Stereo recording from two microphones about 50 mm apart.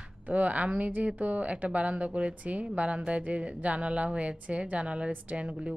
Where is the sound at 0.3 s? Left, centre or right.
Right.